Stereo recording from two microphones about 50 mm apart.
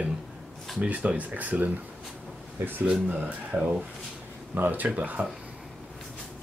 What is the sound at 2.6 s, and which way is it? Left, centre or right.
Speech, right.